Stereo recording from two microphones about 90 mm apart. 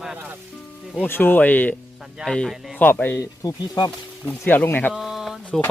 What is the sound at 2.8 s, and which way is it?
Speech, 20° left (ahead or behind).